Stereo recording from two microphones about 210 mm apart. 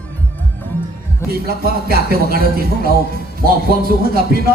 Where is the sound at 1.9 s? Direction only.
45° right (ahead or behind).